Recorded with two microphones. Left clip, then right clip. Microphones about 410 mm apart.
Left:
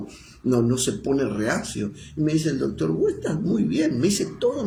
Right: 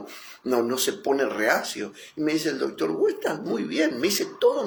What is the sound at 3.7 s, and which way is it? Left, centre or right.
Speech, centre.